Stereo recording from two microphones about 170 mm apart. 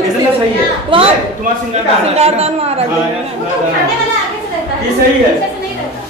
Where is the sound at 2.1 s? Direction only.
35° right (ahead or behind).